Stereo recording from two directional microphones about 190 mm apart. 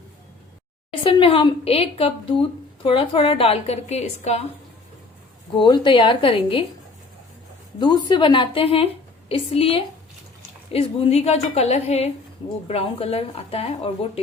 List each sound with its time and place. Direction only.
0.9 s a woman's voice: 30° left (ahead or behind)
5.5 s a woman's voice: 25° left (ahead or behind)
7.8 s a woman's voice: 20° left (ahead or behind)